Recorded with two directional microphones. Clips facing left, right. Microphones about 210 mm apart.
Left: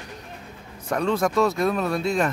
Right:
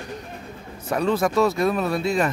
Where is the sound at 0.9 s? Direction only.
5° right (ahead or behind).